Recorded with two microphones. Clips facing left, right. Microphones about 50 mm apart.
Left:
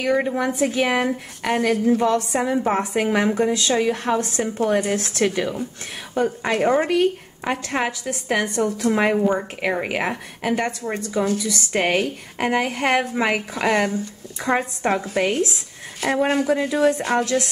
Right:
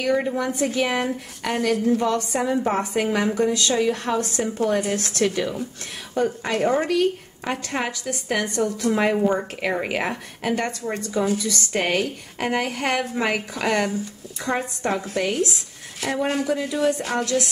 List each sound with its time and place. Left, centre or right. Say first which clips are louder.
0.0 s a woman's voice: left 2 dB; centre
16.0 s speech: left 4 dB; centre
16.4 s a woman's voice: left 3 dB; left